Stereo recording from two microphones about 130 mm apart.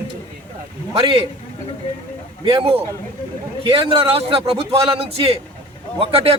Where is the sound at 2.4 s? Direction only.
45° right (ahead or behind).